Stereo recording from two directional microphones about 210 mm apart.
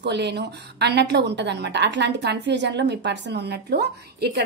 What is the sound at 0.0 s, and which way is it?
A woman's voice, 55° right (ahead or behind).